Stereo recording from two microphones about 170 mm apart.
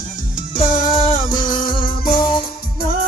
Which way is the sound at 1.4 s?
55° left (ahead or behind).